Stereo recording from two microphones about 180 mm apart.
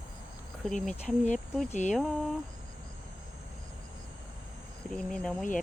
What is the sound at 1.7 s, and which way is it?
Speech, 40° left (ahead or behind).